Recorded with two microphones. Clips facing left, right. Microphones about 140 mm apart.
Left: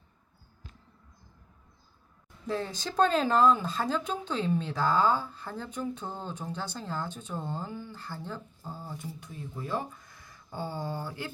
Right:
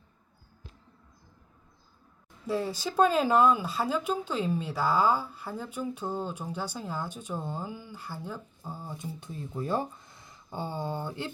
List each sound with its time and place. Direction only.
2.5 s speech: 10° right (ahead or behind)
9.3 s speech: 35° right (ahead or behind)
10.0 s a sound: 25° right (ahead or behind)